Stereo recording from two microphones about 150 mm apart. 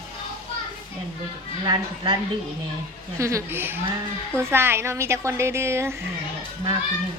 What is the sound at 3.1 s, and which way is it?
A woman's voice, 20° right (ahead or behind).